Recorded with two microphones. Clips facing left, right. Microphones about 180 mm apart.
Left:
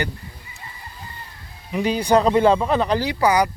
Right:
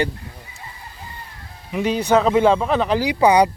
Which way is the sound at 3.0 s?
15° right (ahead or behind).